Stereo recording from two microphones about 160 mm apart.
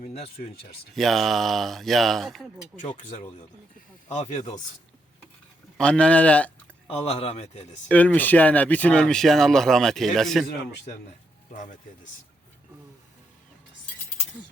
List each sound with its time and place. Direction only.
0.0 s speech: 40° left (ahead or behind)
0.9 s speech: centre (ahead or behind)
2.9 s speech: 50° left (ahead or behind)
5.7 s speech: 5° left (ahead or behind)
6.8 s speech: 35° left (ahead or behind)
7.9 s speech: 10° left (ahead or behind)